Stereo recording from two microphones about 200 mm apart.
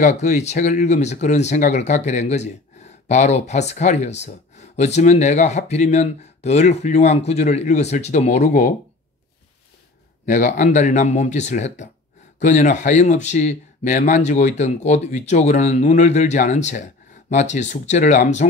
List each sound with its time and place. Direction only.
0.0 s speech: 35° left (ahead or behind)
10.2 s speech: 40° left (ahead or behind)